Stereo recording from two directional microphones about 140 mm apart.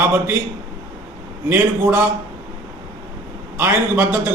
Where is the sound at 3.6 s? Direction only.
15° right (ahead or behind).